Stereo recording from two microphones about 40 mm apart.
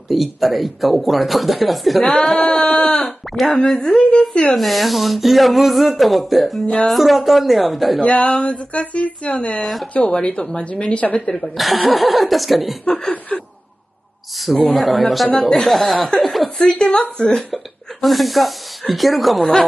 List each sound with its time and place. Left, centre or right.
0.1 s speech: centre
2.1 s chuckle: left
3.0 s speech: centre
4.1 s a woman's voice: left
4.6 s speech: centre
8.0 s speech: left
9.6 s speech: centre
9.9 s speech: left
11.5 s speech: centre
12.8 s chuckle: left
14.4 s speech: centre
16.6 s chuckle: left
18.0 s speech: centre